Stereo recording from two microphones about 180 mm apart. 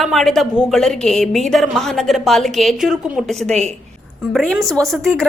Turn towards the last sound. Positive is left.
turn(degrees=0)  # may be behind; listen again after turning